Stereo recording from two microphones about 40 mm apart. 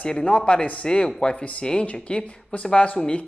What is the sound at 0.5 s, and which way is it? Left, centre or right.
Speech, left.